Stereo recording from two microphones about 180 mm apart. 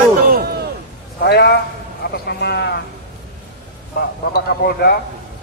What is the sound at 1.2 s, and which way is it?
A man's voice, 65° left (ahead or behind).